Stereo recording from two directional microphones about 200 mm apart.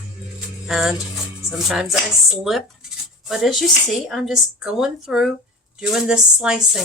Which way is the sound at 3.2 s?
Centre (ahead or behind).